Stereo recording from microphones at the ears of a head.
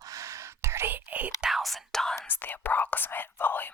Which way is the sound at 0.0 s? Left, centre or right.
Right.